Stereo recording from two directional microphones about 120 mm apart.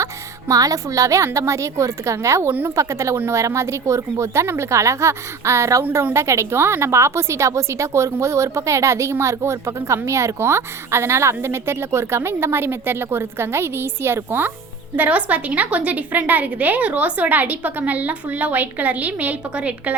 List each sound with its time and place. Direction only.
0.0 s a woman's voice: 25° right (ahead or behind)